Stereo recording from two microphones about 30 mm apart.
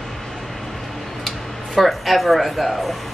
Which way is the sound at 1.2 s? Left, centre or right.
Centre.